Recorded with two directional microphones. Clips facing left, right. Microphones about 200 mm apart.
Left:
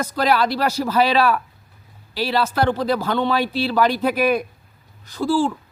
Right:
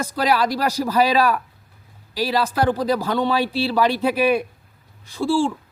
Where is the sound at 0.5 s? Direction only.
35° right (ahead or behind).